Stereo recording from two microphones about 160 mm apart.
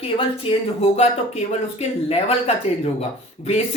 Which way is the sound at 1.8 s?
40° left (ahead or behind).